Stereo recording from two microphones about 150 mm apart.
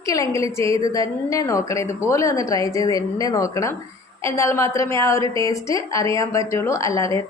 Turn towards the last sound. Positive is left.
turn(degrees=20)  # may be behind; listen again after turning